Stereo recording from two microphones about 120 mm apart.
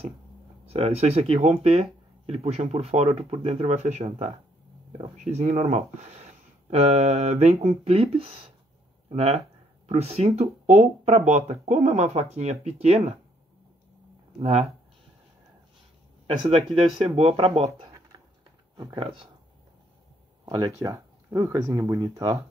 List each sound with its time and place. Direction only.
0.7 s speech: 60° right (ahead or behind)
5.1 s speech: 80° right; by 13.2 s 60° right (ahead or behind)
14.4 s speech: 60° right (ahead or behind)
16.4 s speech: 55° right (ahead or behind)
18.1 s a sound: 35° right (ahead or behind)
18.9 s speech: 45° right (ahead or behind)
20.4 s speech: 35° right (ahead or behind)